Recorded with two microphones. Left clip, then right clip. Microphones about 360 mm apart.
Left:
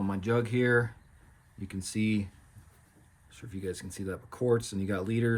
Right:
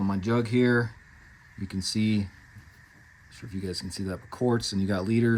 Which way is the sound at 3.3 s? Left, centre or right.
Centre.